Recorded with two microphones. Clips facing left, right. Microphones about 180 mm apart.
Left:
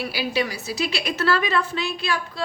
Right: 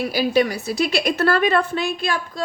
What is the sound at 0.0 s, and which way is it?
A woman's voice, 45° right (ahead or behind).